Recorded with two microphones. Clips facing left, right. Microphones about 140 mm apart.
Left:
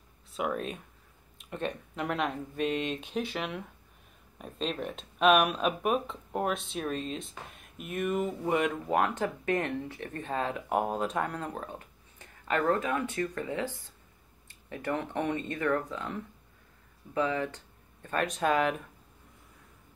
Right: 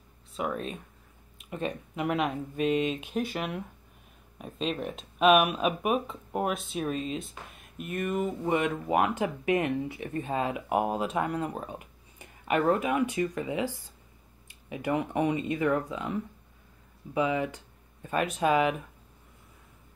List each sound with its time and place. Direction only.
0.3 s speech: centre (ahead or behind)